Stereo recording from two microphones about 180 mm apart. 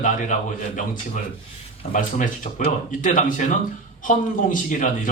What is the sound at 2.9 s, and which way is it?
Speech, 45° left (ahead or behind).